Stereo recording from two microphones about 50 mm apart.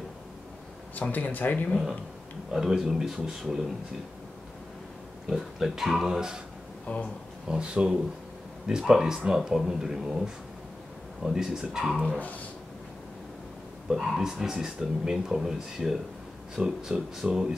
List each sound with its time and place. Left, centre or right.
1.1 s speech: left
2.5 s speech: centre
5.3 s speech: centre
6.9 s speech: left
7.4 s speech: right
12.2 s speech: left
13.8 s speech: centre